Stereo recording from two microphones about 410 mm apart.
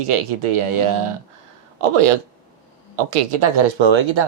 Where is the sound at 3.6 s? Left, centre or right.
Right.